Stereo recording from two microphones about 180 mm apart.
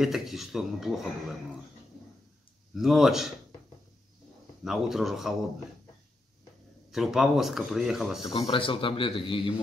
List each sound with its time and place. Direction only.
0.0 s speech: centre (ahead or behind)
2.7 s speech: centre (ahead or behind)
4.6 s speech: centre (ahead or behind)
6.9 s speech: centre (ahead or behind)
8.4 s speech: 30° left (ahead or behind)